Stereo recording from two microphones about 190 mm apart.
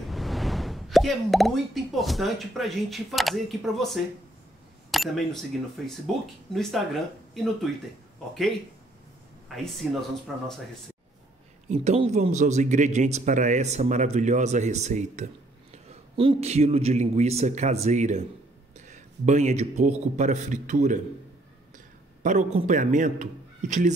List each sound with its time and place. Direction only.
0.0 s speech: centre (ahead or behind)
9.7 s speech: centre (ahead or behind)
11.7 s a man's voice: 35° right (ahead or behind)